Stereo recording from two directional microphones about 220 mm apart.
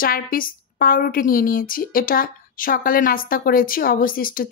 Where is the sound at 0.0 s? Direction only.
40° left (ahead or behind).